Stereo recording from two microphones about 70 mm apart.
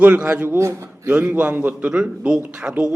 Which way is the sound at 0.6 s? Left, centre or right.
Right.